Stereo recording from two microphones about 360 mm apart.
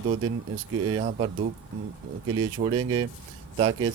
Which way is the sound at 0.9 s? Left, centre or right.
Centre.